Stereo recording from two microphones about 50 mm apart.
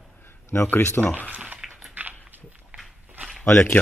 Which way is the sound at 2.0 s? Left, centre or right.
Right.